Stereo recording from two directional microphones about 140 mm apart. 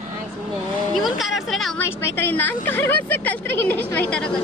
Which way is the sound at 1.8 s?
15° left (ahead or behind).